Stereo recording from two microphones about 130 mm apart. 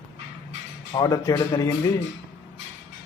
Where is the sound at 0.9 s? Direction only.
30° left (ahead or behind).